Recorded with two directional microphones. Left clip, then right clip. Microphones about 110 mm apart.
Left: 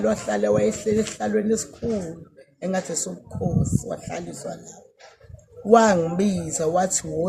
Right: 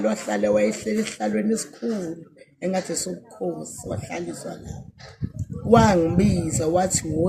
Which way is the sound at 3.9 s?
35° left (ahead or behind).